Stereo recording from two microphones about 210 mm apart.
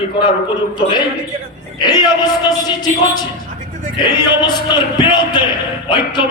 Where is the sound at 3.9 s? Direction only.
20° left (ahead or behind).